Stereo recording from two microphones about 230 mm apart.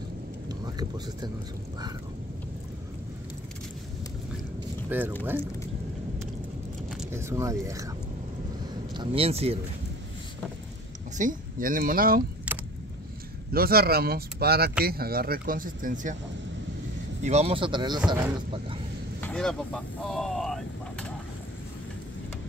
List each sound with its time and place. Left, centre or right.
0.5 s thunder: centre
4.8 s speech: centre
6.9 s speech: centre
8.9 s speech: right
11.1 s speech: right
12.5 s vehicle: centre
13.5 s speech: right
17.2 s speech: right
19.2 s a sound: centre